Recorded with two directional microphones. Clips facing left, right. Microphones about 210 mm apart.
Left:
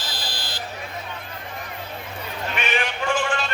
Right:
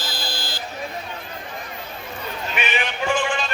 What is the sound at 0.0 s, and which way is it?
Buzzer, 30° right (ahead or behind).